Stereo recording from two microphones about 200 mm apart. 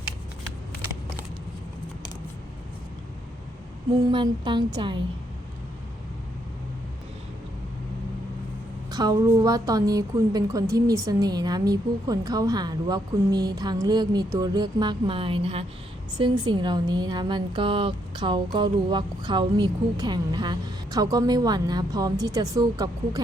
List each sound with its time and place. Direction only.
4.1 s a woman's voice: 25° right (ahead or behind)
8.9 s a woman's voice: 20° right (ahead or behind)